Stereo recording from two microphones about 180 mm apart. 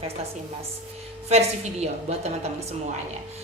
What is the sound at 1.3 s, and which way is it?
A woman's voice, 35° right (ahead or behind).